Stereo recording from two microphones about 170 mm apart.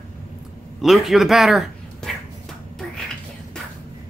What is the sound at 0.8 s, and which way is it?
Speech, centre (ahead or behind).